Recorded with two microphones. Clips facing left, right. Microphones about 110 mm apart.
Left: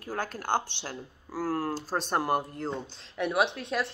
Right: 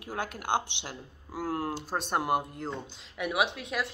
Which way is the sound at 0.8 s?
20° right (ahead or behind).